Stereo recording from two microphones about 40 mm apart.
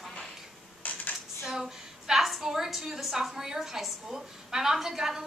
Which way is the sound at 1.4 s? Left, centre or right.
Centre.